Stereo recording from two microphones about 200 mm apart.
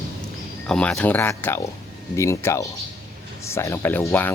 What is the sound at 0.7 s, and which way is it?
Speech, 5° left (ahead or behind).